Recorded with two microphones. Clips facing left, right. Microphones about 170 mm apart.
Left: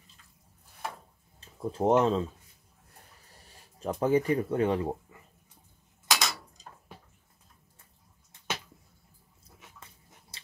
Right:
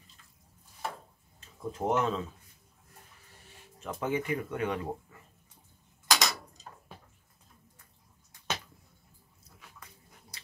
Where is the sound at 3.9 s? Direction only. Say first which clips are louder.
Left 6 dB; 35° left (ahead or behind).